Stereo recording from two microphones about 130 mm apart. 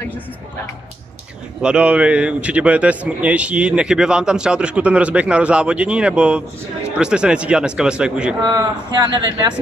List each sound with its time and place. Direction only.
1.6 s speech: 5° right (ahead or behind)
8.5 s speech: 35° right (ahead or behind)